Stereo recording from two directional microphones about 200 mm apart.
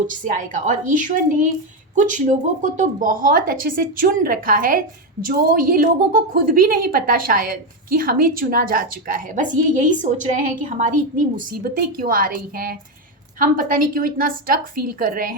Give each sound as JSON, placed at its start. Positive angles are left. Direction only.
{"t": 0.1, "sound": "a woman's voice", "side_deg": -40}